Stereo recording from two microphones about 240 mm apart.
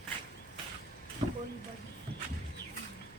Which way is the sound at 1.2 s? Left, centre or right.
Right.